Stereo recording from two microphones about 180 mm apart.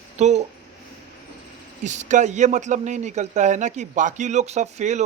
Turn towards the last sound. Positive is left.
turn(degrees=-40)  # may be behind; listen again after turning